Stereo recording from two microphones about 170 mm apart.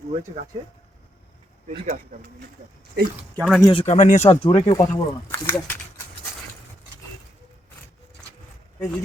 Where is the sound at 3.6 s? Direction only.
30° left (ahead or behind).